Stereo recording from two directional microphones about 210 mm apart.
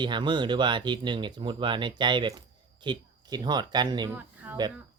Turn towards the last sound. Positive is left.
turn(degrees=-10)  # may be behind; listen again after turning